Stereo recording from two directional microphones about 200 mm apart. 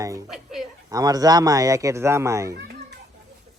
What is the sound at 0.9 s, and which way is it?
A man's voice, 20° right (ahead or behind).